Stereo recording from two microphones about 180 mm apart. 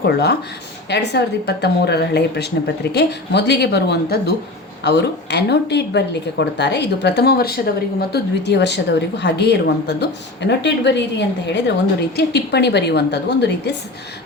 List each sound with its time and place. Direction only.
0.0 s speech: 65° left (ahead or behind)
8.1 s speech: 70° left (ahead or behind)